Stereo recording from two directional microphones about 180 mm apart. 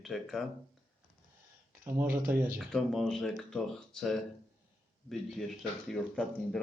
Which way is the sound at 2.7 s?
Centre (ahead or behind).